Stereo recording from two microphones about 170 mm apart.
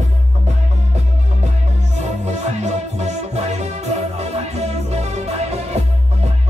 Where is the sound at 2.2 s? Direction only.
40° right (ahead or behind).